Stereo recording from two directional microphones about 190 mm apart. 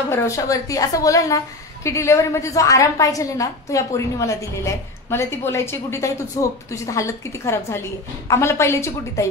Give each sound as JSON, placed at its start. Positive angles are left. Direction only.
{"t": 0.1, "sound": "a woman's voice", "side_deg": 15}